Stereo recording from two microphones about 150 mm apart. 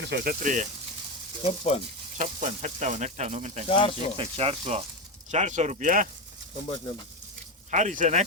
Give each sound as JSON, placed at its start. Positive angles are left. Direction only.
{"t": 0.1, "sound": "speech", "side_deg": -65}
{"t": 1.5, "sound": "speech", "side_deg": 45}
{"t": 2.1, "sound": "speech", "side_deg": -45}
{"t": 3.7, "sound": "speech", "side_deg": 35}
{"t": 4.2, "sound": "speech", "side_deg": -40}
{"t": 5.3, "sound": "speech", "side_deg": -50}
{"t": 7.7, "sound": "speech", "side_deg": -55}